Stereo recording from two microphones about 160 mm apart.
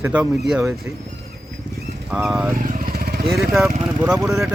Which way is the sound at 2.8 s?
65° right (ahead or behind).